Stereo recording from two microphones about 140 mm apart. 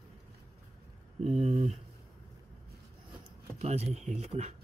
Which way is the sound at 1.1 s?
50° right (ahead or behind).